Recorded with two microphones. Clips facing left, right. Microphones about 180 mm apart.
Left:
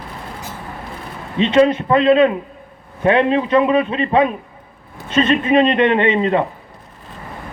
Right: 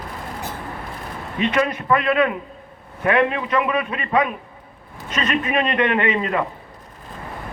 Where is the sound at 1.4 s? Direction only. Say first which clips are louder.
Left 8 dB; 25° left (ahead or behind).